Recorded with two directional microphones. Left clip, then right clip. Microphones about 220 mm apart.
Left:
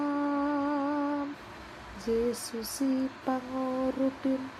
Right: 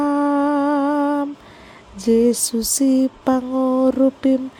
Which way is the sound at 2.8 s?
50° right (ahead or behind).